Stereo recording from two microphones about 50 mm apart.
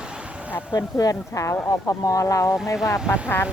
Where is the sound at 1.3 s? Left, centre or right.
Left.